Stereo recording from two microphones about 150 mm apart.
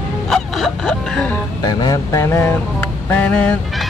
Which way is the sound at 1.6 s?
25° left (ahead or behind).